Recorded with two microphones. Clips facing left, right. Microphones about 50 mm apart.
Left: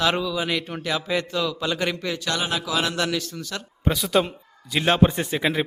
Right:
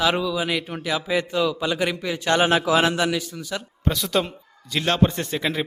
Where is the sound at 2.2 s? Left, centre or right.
Right.